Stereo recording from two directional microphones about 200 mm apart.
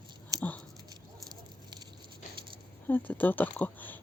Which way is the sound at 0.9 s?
20° right (ahead or behind).